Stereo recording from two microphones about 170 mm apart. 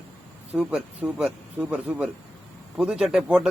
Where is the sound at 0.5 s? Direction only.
10° right (ahead or behind).